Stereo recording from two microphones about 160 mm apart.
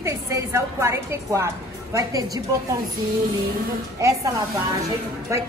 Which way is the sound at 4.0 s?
20° right (ahead or behind).